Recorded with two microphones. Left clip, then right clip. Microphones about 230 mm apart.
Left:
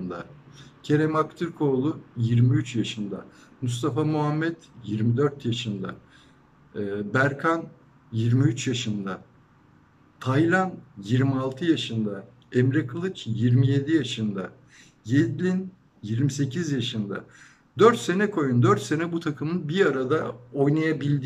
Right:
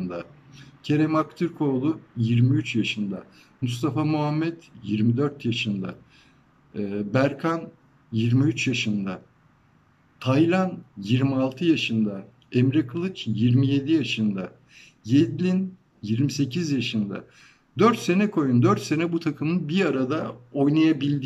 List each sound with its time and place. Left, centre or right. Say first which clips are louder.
0.8 s a man's voice: even; centre
10.2 s a man's voice: right 1 dB; centre